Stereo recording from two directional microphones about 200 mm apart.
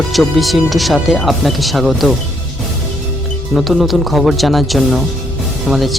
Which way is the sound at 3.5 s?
Centre (ahead or behind).